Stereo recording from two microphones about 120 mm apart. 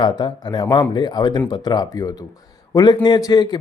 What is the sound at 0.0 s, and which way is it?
A man's voice, 40° left (ahead or behind).